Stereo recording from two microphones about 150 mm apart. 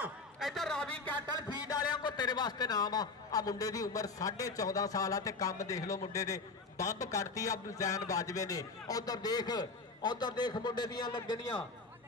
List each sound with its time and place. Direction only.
0.0 s a man's voice: centre (ahead or behind)
1.7 s a man's voice: 25° left (ahead or behind)